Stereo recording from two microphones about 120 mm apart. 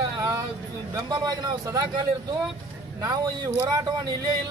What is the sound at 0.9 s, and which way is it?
Speech, 35° right (ahead or behind).